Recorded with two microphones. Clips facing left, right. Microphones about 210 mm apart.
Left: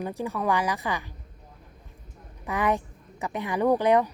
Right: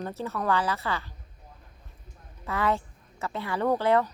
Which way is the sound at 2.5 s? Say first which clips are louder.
Left 2 dB; 15° left (ahead or behind).